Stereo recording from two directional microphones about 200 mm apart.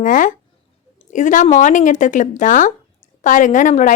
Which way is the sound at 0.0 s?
40° left (ahead or behind).